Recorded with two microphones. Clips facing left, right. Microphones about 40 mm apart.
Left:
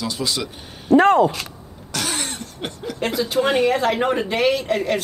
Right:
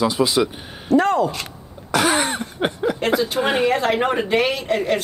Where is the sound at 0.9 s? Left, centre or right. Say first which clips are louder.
Left 3 dB; left.